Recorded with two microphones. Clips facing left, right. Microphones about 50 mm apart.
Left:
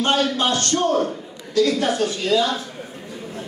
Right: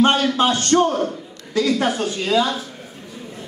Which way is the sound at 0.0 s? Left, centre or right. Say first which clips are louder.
Right 3 dB; right.